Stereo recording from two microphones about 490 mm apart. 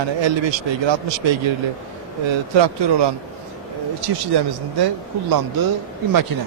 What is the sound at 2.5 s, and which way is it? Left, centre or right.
Speech, right.